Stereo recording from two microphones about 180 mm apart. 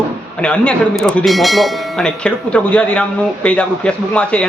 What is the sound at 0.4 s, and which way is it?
Speech, 5° left (ahead or behind).